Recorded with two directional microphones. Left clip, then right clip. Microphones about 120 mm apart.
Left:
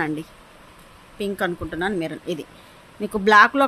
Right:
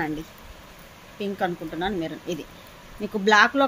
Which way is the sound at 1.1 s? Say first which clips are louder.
Left 2 dB; 40° left (ahead or behind).